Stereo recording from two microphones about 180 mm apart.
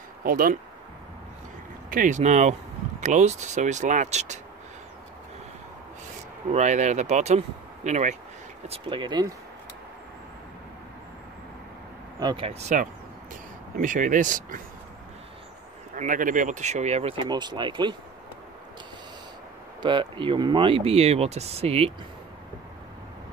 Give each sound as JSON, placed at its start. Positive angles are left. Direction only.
{"t": 0.2, "sound": "speech", "side_deg": -55}
{"t": 1.9, "sound": "speech", "side_deg": -45}
{"t": 6.5, "sound": "speech", "side_deg": -40}
{"t": 12.2, "sound": "speech", "side_deg": -25}
{"t": 16.0, "sound": "speech", "side_deg": -50}
{"t": 17.3, "sound": "speech", "side_deg": -25}
{"t": 19.8, "sound": "speech", "side_deg": -25}